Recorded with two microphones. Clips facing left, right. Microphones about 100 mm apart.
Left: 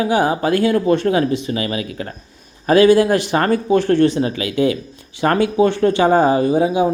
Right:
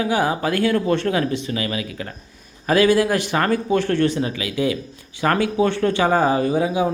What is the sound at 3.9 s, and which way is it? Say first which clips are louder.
Speech: left 5 dB; 20° left (ahead or behind).